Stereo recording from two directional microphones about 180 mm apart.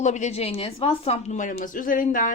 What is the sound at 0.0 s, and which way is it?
A woman's voice, 40° left (ahead or behind).